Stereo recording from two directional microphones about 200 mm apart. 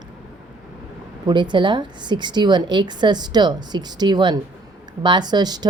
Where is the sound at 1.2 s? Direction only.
20° right (ahead or behind).